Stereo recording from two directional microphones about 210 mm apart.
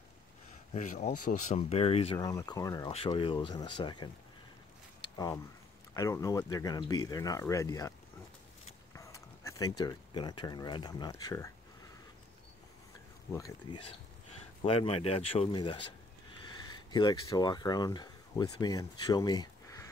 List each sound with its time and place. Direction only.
0.7 s speech: 35° left (ahead or behind)
2.1 s speech: 15° left (ahead or behind)
5.0 s a sound: 20° left (ahead or behind)
5.9 s speech: 15° left (ahead or behind)
8.9 s speech: 15° left (ahead or behind)
13.3 s speech: 20° left (ahead or behind)